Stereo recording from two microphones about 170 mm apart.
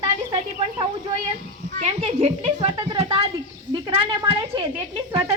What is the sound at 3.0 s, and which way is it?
A woman's voice, 35° right (ahead or behind).